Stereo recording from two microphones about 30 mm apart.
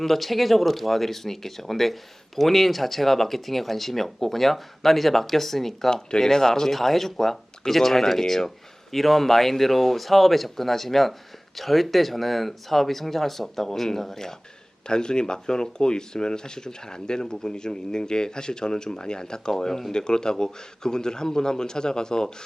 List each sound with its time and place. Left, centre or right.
0.0 s speech: centre
5.9 s speech: left
14.8 s speech: left
19.9 s speech: left